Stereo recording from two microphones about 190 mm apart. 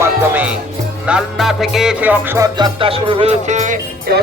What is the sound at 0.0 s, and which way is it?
Music, 10° right (ahead or behind).